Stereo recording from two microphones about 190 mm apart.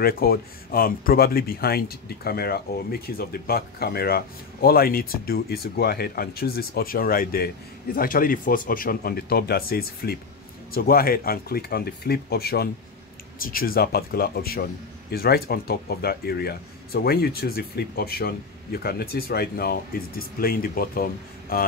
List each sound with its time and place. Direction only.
0.0 s speech: 50° left (ahead or behind)